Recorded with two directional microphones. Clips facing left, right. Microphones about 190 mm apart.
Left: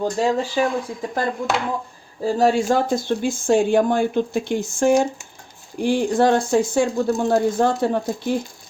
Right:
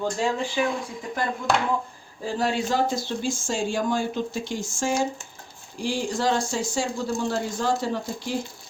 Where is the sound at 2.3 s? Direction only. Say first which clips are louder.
Left 7 dB; 45° left (ahead or behind).